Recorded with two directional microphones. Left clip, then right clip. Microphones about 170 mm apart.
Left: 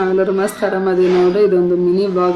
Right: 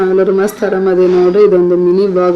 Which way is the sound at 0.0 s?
20° right (ahead or behind).